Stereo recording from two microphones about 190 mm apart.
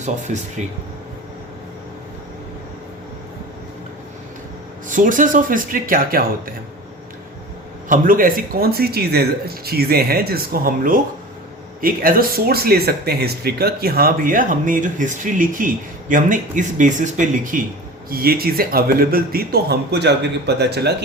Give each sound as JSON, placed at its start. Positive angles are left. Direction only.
{"t": 0.0, "sound": "speech", "side_deg": -40}
{"t": 4.9, "sound": "speech", "side_deg": -45}
{"t": 7.9, "sound": "speech", "side_deg": -45}